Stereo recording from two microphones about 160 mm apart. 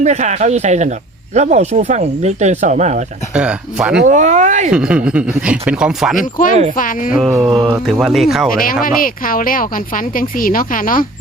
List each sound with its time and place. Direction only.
0.0 s speech: 45° right (ahead or behind)
3.3 s speech: 5° right (ahead or behind)
4.0 s speech: 50° right (ahead or behind)
4.7 s speech: 5° right (ahead or behind)
6.7 s speech: 55° left (ahead or behind)
7.1 s speech: 10° right (ahead or behind)
9.0 s speech: 60° left (ahead or behind)